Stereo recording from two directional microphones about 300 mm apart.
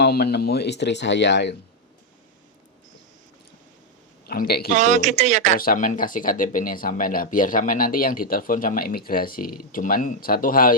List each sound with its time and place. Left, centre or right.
0.0 s speech: left
4.3 s speech: left
4.7 s speech: right
5.5 s speech: left